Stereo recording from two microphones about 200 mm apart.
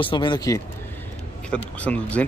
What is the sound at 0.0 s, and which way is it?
Speech, 25° left (ahead or behind).